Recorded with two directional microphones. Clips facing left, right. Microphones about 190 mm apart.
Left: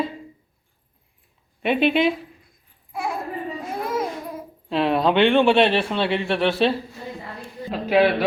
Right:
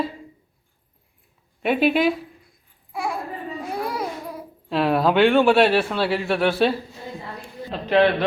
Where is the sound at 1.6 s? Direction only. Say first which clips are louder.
Even; 5° right (ahead or behind).